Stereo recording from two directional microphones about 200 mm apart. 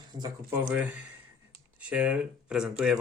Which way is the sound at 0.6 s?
10° right (ahead or behind).